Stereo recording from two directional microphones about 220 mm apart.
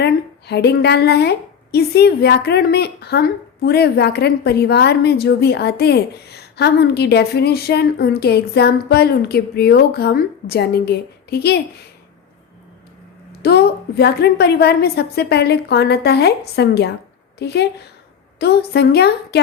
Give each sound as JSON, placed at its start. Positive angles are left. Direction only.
{"t": 0.0, "sound": "a woman's voice", "side_deg": 50}
{"t": 13.4, "sound": "a woman's voice", "side_deg": 45}